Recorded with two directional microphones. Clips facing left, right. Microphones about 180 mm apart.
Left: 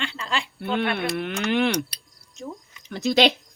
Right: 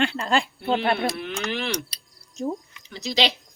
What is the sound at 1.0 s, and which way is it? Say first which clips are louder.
Speech: left 2 dB; 60° left (ahead or behind).